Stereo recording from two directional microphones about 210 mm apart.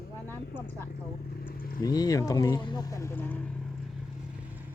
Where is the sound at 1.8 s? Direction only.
20° left (ahead or behind).